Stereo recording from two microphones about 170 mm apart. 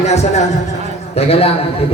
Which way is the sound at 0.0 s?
40° left (ahead or behind).